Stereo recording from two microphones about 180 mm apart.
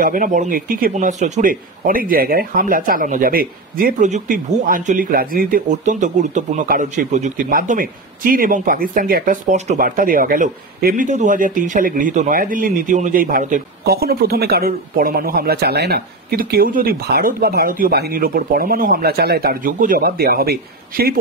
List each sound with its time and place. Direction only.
0.0 s speech: 50° right (ahead or behind)